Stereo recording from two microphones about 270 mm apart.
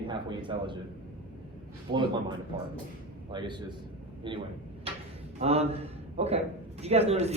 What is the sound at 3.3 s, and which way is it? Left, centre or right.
A man's voice, centre.